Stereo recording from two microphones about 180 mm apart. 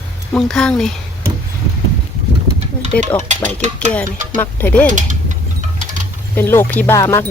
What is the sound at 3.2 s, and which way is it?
Stir, 40° right (ahead or behind).